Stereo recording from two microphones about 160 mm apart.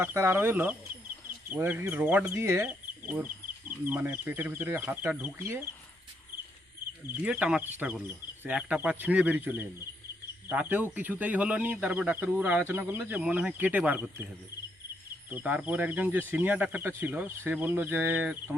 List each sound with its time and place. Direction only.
0.0 s speech: 15° right (ahead or behind)
7.3 s speech: 10° right (ahead or behind)
15.3 s speech: 10° right (ahead or behind)